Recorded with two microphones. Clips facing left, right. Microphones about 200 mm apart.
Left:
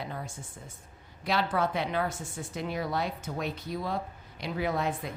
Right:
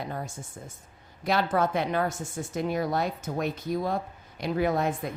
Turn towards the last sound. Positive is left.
turn(degrees=-45)  # may be behind; listen again after turning